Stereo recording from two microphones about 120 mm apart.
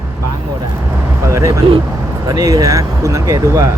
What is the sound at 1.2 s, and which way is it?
Speech, 25° right (ahead or behind).